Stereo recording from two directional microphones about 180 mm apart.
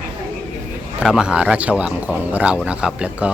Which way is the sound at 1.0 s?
5° right (ahead or behind).